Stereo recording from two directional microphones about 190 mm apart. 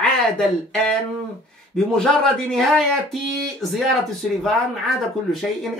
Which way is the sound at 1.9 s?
5° left (ahead or behind).